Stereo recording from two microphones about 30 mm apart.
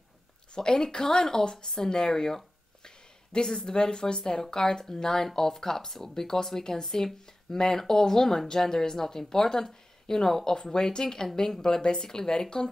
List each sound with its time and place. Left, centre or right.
0.6 s speech: left